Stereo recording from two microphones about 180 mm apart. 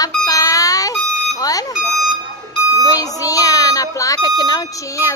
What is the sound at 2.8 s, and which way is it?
Speech, 20° left (ahead or behind).